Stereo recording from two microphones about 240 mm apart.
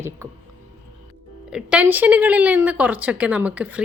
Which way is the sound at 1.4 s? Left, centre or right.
Centre.